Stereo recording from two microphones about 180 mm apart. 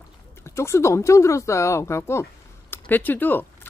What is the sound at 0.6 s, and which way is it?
Speech, 15° left (ahead or behind).